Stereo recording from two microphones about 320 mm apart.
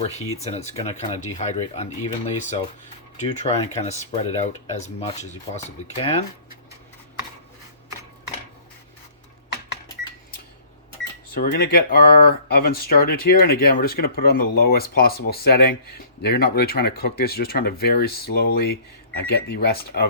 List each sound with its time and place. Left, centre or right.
0.4 s speech: centre
11.3 s speech: left